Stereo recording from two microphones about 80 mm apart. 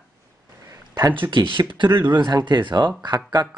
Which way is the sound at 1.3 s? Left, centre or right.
Right.